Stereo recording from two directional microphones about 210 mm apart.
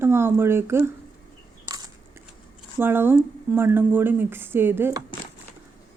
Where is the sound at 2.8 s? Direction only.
10° right (ahead or behind).